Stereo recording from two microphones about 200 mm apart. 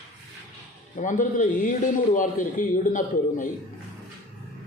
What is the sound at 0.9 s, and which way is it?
A man's voice, 40° left (ahead or behind).